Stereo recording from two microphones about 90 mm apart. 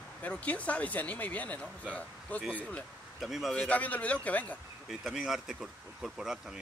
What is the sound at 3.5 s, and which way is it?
Speech, 15° left (ahead or behind).